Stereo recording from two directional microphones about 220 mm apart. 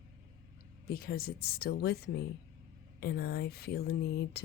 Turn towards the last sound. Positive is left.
turn(degrees=45)  # may be behind; listen again after turning